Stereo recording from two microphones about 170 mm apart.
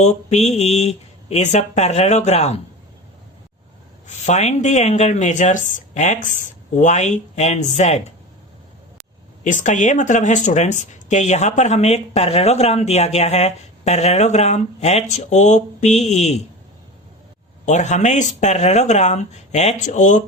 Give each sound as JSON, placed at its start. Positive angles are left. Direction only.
{"t": 0.0, "sound": "speech", "side_deg": 40}
{"t": 4.0, "sound": "speech", "side_deg": 45}
{"t": 9.4, "sound": "speech", "side_deg": 45}
{"t": 17.7, "sound": "speech", "side_deg": 45}